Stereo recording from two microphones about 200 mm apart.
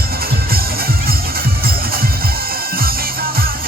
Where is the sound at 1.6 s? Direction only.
45° right (ahead or behind).